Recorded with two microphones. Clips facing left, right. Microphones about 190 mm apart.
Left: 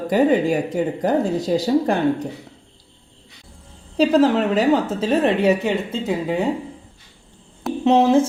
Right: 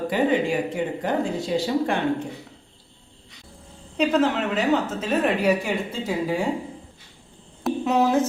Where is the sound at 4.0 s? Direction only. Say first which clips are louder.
Left 5 dB; 35° left (ahead or behind).